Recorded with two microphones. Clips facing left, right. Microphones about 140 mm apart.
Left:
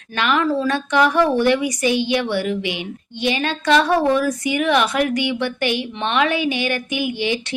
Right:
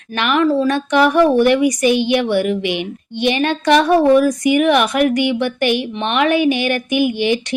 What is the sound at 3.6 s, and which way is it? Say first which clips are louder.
Speech: right 4 dB; 15° right (ahead or behind).